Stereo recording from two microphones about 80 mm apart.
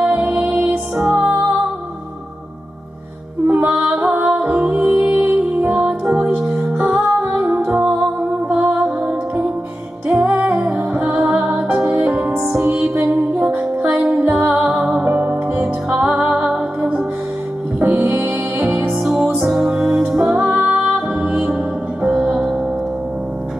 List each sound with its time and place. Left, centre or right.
0.0 s music: centre
3.4 s music: centre
17.7 s music: right
18.9 s music: centre
21.1 s music: centre